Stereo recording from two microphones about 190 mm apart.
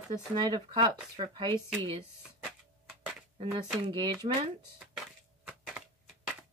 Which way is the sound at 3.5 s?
25° right (ahead or behind).